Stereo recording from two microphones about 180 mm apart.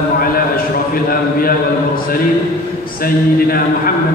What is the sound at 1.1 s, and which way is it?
A man's voice, 55° left (ahead or behind).